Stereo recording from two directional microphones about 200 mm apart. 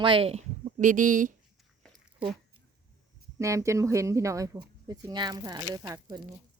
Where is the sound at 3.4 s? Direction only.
15° right (ahead or behind).